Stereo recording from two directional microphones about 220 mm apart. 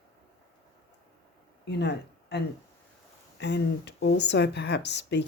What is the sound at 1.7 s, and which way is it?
Speech, 50° left (ahead or behind).